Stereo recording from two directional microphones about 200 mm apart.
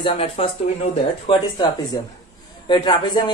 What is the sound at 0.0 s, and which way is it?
Speech, 25° left (ahead or behind).